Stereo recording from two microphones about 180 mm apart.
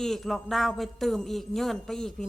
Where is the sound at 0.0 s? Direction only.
Centre (ahead or behind).